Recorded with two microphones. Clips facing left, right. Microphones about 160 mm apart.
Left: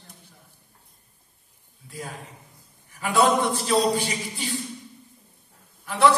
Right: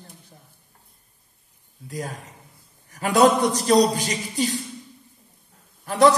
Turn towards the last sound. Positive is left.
turn(degrees=-40)  # may be behind; listen again after turning